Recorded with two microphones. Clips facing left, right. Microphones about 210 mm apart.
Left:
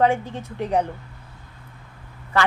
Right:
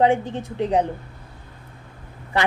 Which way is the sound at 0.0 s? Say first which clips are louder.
Right 2 dB; 15° right (ahead or behind).